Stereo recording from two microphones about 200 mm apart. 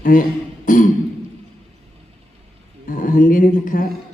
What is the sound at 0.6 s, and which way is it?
Beatboxing, 40° left (ahead or behind).